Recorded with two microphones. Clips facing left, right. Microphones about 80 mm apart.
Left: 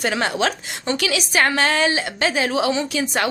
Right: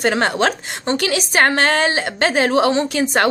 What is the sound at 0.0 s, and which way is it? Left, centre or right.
A woman's voice, right.